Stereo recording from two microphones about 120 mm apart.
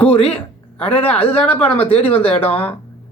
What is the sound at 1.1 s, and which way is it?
Speech, 10° left (ahead or behind).